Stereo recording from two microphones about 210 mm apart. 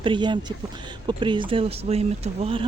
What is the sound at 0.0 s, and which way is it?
Speech, 20° right (ahead or behind).